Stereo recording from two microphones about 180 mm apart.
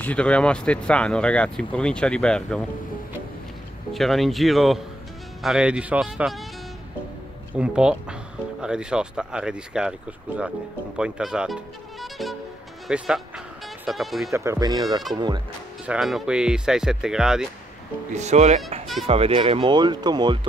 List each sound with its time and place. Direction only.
0.0 s speech: 5° left (ahead or behind)
3.9 s speech: centre (ahead or behind)
7.5 s speech: 5° right (ahead or behind)
14.3 s speech: 15° right (ahead or behind)
15.8 s speech: 5° right (ahead or behind)
18.1 s speech: 40° right (ahead or behind); by 20.3 s 25° right (ahead or behind)